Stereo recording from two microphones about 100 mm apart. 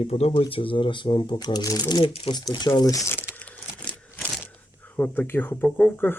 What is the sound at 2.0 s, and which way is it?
Speech, 60° left (ahead or behind).